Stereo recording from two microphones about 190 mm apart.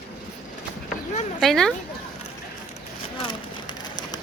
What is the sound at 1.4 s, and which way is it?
Speech, centre (ahead or behind).